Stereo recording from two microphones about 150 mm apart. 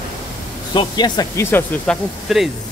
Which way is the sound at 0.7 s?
30° left (ahead or behind).